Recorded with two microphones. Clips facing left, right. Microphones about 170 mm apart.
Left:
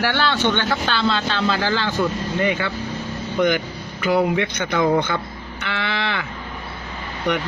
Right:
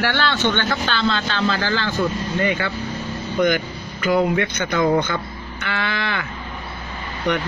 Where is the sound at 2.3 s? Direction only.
15° left (ahead or behind).